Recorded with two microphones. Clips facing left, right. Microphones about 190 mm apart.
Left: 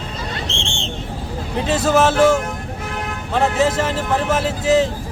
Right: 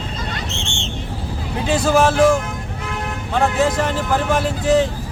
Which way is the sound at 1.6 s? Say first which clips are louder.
Even; 5° left (ahead or behind).